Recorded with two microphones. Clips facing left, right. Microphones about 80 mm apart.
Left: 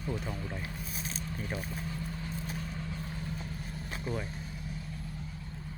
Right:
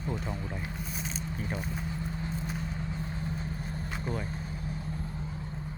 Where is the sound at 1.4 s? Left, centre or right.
Centre.